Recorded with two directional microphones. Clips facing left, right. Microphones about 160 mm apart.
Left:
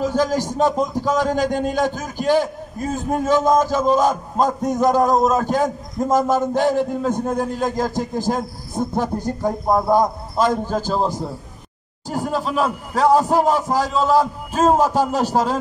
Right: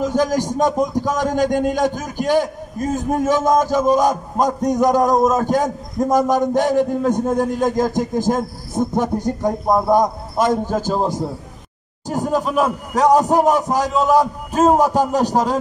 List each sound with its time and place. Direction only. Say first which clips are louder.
0.0 s a man's voice: right 1 dB; 15° right (ahead or behind)